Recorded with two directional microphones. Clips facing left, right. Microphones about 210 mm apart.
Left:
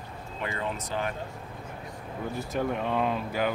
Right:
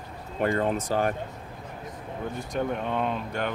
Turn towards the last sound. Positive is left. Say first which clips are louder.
# left 1 dB
turn(degrees=5)  # may be behind; listen again after turning